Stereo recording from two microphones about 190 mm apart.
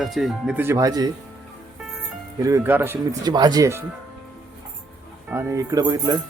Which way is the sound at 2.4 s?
15° right (ahead or behind).